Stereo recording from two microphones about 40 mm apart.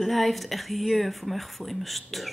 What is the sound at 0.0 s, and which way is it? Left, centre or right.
Speech, centre.